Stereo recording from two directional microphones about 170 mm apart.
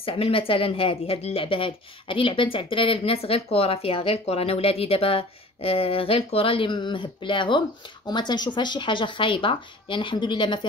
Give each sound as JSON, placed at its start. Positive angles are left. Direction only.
{"t": 0.0, "sound": "speech", "side_deg": 30}